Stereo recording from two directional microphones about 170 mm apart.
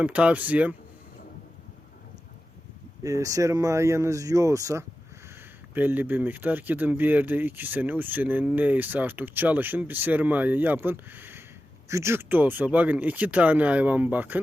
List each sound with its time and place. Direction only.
0.0 s speech: 10° right (ahead or behind)
3.0 s speech: 20° right (ahead or behind)